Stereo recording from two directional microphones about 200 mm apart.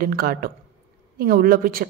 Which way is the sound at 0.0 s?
45° right (ahead or behind).